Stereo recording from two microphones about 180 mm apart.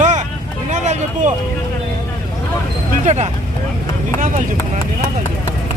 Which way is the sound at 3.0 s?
35° right (ahead or behind).